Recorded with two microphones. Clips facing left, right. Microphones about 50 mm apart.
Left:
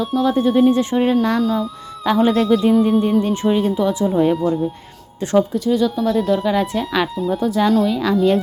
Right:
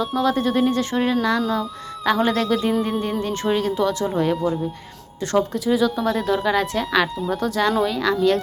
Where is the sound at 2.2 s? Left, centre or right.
Centre.